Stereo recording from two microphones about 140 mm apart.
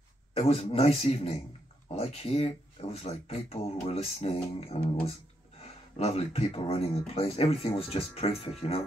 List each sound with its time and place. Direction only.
0.3 s speech: 45° left (ahead or behind)